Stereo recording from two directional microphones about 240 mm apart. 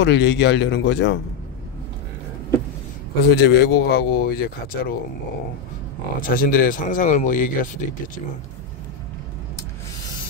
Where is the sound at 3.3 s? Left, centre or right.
Left.